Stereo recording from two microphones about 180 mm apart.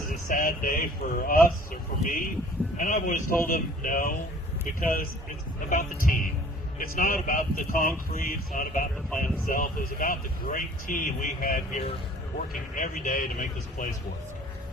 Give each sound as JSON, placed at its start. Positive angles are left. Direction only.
{"t": 0.3, "sound": "speech", "side_deg": 50}